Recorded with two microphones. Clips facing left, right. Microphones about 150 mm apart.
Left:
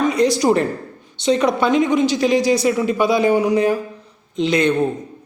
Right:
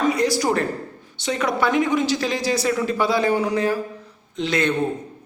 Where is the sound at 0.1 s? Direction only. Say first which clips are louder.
Left 4 dB; 20° left (ahead or behind).